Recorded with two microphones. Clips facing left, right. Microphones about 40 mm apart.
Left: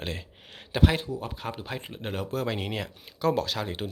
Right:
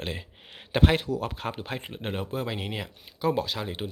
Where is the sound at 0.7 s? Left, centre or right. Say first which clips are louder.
Right 2 dB; right.